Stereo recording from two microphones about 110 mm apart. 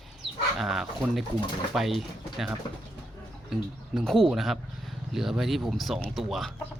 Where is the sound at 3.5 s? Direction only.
Centre (ahead or behind).